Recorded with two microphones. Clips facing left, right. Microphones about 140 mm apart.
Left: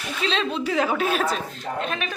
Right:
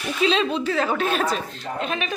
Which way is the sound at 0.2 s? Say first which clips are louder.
Right 4 dB; 5° right (ahead or behind).